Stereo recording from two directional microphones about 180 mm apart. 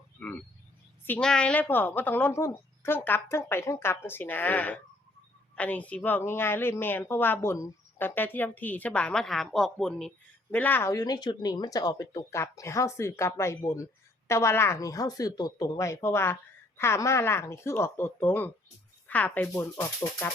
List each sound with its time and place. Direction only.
1.0 s a woman's voice: 5° left (ahead or behind)